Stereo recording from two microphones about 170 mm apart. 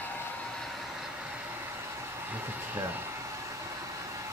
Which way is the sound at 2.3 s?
10° right (ahead or behind).